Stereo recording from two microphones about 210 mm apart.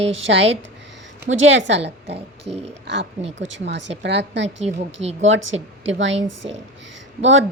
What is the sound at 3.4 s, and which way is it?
Speech, 55° right (ahead or behind).